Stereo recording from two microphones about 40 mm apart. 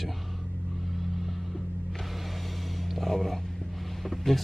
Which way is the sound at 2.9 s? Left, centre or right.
Centre.